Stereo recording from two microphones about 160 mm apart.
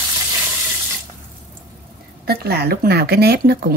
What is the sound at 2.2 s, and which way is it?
Speech, 75° right (ahead or behind).